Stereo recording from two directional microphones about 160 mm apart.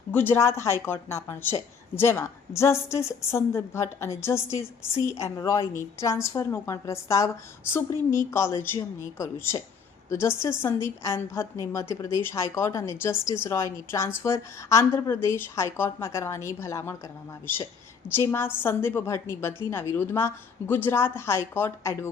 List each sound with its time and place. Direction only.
0.1 s speech: 15° left (ahead or behind)